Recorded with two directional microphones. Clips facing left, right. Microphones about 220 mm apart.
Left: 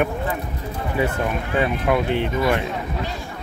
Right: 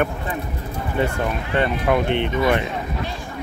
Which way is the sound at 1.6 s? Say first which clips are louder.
Right 1 dB; 5° left (ahead or behind).